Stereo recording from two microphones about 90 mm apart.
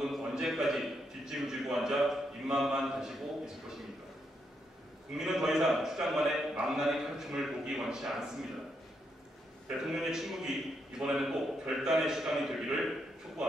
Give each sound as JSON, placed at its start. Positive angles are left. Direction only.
{"t": 0.1, "sound": "a man's voice", "side_deg": -5}
{"t": 5.1, "sound": "a man's voice", "side_deg": -5}
{"t": 9.9, "sound": "a man's voice", "side_deg": -5}